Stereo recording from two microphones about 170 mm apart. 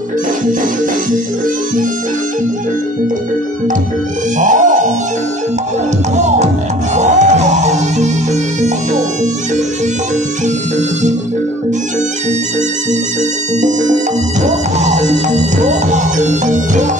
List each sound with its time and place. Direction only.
4.4 s music: 50° right (ahead or behind)
6.1 s music: 40° right (ahead or behind)
13.6 s music: 45° right (ahead or behind)